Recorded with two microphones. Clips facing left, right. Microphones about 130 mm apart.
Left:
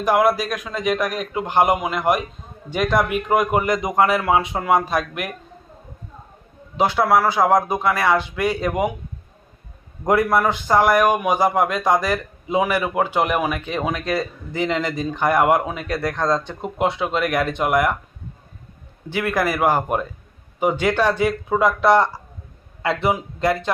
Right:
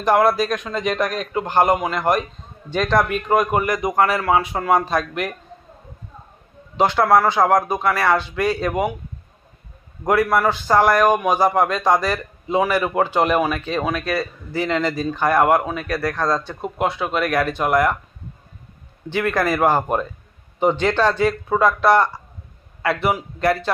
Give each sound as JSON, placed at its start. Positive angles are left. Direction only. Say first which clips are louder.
{"t": 0.0, "sound": "a man's voice", "louder": "right 1 dB", "side_deg": 10}
{"t": 6.7, "sound": "a man's voice", "louder": "right 2 dB", "side_deg": 10}
{"t": 10.1, "sound": "a man's voice", "louder": "even", "side_deg": 20}
{"t": 19.1, "sound": "a man's voice", "louder": "right 1 dB", "side_deg": 10}